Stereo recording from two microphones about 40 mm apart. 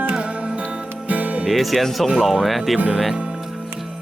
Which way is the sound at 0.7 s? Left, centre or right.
Right.